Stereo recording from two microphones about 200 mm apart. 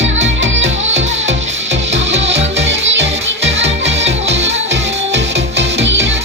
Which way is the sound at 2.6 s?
65° right (ahead or behind).